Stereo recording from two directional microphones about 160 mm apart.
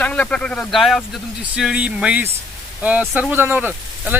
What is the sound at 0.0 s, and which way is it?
Speech, 10° left (ahead or behind).